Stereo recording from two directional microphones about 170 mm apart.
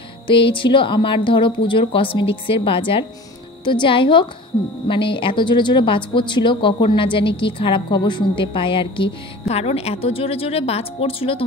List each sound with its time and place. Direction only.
0.3 s speech: 30° left (ahead or behind)